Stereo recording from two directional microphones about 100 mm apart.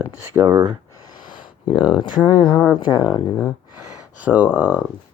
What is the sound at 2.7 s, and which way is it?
Speech, 45° left (ahead or behind).